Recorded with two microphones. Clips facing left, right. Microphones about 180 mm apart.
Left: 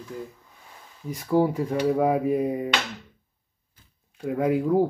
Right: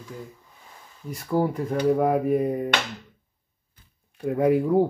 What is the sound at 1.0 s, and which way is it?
Speech, 5° left (ahead or behind).